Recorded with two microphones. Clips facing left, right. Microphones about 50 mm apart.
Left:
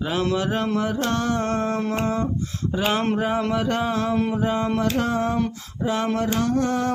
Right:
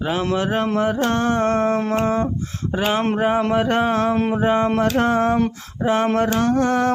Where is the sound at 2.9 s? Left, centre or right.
Right.